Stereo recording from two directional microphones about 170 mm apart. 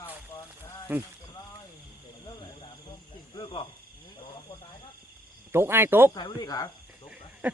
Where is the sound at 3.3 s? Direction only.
30° left (ahead or behind).